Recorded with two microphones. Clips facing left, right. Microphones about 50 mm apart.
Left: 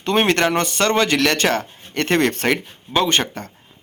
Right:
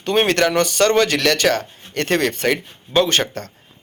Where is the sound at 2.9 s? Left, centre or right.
Left.